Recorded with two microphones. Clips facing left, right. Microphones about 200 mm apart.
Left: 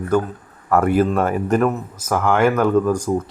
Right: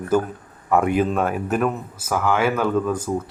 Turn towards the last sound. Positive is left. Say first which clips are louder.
# left 4 dB
turn(degrees=10)  # may be behind; listen again after turning